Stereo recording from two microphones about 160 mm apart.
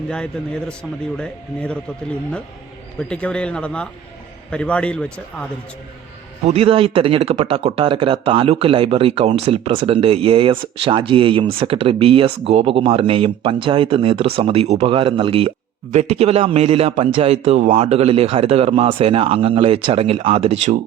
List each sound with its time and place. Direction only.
0.7 s speech: 5° left (ahead or behind)
3.1 s speech: 5° left (ahead or behind)
6.4 s speech: 40° right (ahead or behind)